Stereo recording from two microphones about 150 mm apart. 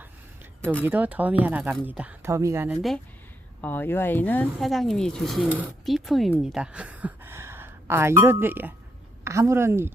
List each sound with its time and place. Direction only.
0.9 s a woman's voice: 10° right (ahead or behind)
3.6 s speech: 15° left (ahead or behind)
4.6 s a woman's voice: centre (ahead or behind); by 9.9 s 15° right (ahead or behind)